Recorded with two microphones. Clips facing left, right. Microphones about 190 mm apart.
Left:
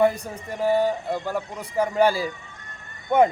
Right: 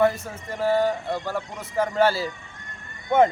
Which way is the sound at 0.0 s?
15° left (ahead or behind).